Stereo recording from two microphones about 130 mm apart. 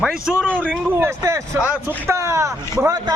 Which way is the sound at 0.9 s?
15° right (ahead or behind).